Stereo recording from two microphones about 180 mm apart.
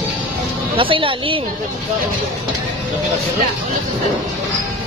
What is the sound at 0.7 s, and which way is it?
Speech, 30° right (ahead or behind).